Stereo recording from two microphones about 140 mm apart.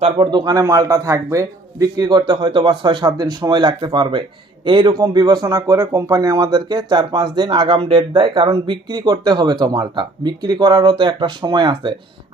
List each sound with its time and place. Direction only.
0.0 s speech: 35° right (ahead or behind)